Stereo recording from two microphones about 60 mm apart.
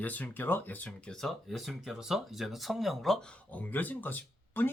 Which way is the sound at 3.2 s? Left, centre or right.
Left.